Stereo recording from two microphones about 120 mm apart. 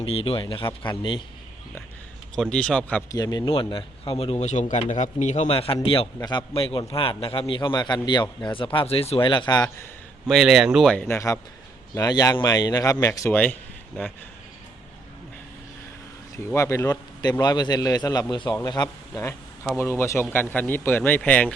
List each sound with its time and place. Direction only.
0.0 s a man's voice: 55° left (ahead or behind)
2.3 s speech: 5° left (ahead or behind)
3.1 s a man's voice: 30° left (ahead or behind)
3.5 s a man's voice: 45° left (ahead or behind)
10.2 s speech: centre (ahead or behind)
11.1 s a man's voice: 30° left (ahead or behind)
13.3 s speech: 15° left (ahead or behind)
16.6 s a man's voice: 25° left (ahead or behind)
19.7 s speech: 20° left (ahead or behind)